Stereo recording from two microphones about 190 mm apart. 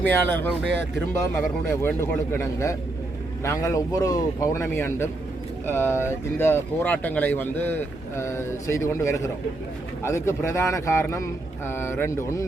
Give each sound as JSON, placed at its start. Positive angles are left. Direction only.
{"t": 0.0, "sound": "speech", "side_deg": 10}
{"t": 1.8, "sound": "speech", "side_deg": 10}